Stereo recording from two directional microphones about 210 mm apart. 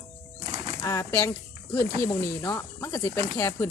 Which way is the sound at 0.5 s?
25° right (ahead or behind).